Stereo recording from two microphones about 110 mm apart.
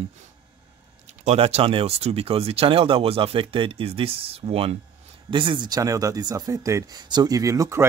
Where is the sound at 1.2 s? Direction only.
65° right (ahead or behind).